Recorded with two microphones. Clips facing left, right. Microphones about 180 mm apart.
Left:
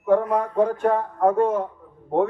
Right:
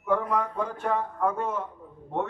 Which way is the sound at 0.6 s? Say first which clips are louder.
Left 8 dB; 50° left (ahead or behind).